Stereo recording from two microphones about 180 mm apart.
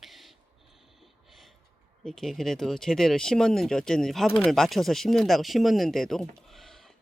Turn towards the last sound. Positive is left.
turn(degrees=0)  # may be behind; listen again after turning